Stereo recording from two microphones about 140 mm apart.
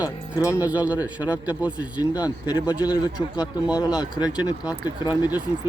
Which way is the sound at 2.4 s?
25° left (ahead or behind).